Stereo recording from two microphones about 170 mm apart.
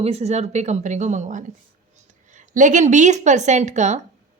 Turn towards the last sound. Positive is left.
turn(degrees=-45)  # may be behind; listen again after turning